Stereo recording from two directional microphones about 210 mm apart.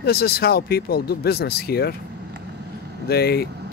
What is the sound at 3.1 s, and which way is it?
Speech, 50° left (ahead or behind).